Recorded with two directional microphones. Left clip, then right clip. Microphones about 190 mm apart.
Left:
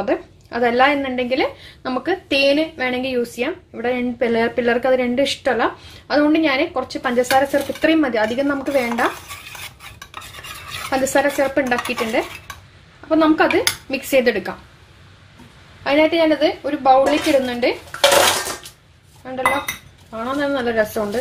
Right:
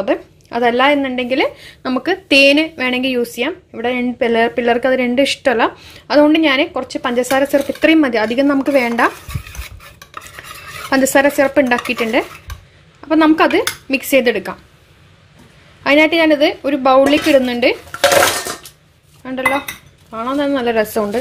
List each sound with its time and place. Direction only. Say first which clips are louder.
0.0 s a woman's voice: right 3 dB; 35° right (ahead or behind)
10.9 s a woman's voice: right 5 dB; 40° right (ahead or behind)
15.8 s a woman's voice: right 4 dB; 40° right (ahead or behind)
19.2 s a woman's voice: right 2 dB; 40° right (ahead or behind)